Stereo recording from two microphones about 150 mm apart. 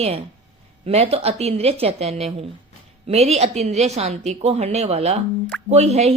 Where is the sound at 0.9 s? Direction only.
40° right (ahead or behind).